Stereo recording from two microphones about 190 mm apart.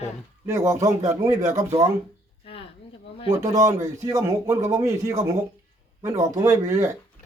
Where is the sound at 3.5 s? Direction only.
15° right (ahead or behind).